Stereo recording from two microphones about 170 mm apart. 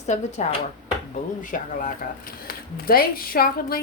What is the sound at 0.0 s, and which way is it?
A woman's voice, 40° left (ahead or behind).